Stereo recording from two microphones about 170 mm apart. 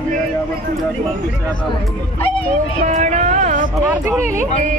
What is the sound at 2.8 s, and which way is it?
Speech, 45° right (ahead or behind).